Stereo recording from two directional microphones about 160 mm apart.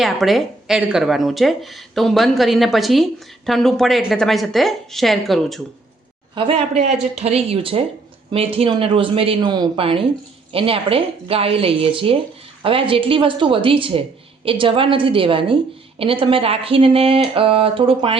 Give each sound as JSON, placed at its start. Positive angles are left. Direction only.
{"t": 0.0, "sound": "a woman's voice", "side_deg": 0}
{"t": 6.3, "sound": "speech", "side_deg": -35}